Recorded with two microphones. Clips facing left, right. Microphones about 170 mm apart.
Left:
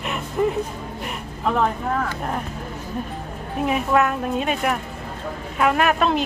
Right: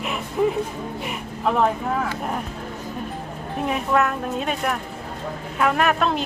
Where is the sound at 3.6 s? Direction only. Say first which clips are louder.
Left 2 dB; centre (ahead or behind).